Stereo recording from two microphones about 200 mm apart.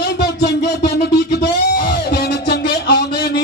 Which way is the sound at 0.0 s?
55° left (ahead or behind).